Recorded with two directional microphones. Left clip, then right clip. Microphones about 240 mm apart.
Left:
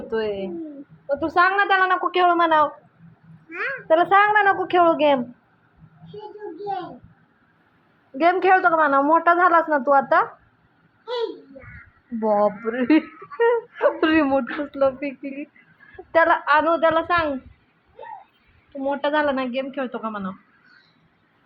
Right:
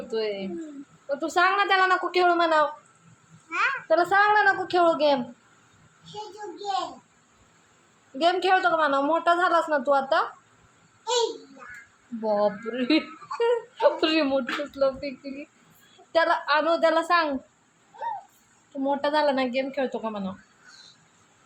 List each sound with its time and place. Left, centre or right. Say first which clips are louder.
0.1 s speech: left 4 dB; centre
3.8 s a woman's voice: left 5 dB; centre
8.2 s a woman's voice: left 5 dB; centre
12.2 s a woman's voice: left 5 dB; left; by 17.3 s centre
18.8 s a woman's voice: left 2 dB; centre